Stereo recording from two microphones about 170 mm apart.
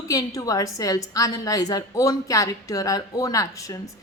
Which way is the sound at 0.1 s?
20° left (ahead or behind).